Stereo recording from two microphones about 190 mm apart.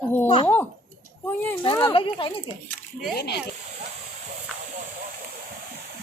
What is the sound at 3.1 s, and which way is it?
Speech, 60° left (ahead or behind).